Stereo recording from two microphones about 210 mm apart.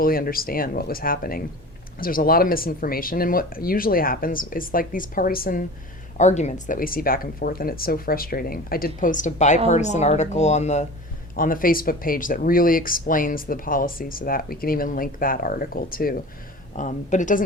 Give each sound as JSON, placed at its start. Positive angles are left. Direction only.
{"t": 0.0, "sound": "speech", "side_deg": 45}